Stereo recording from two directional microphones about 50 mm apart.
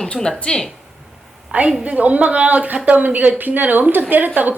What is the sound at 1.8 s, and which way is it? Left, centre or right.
Speech, right.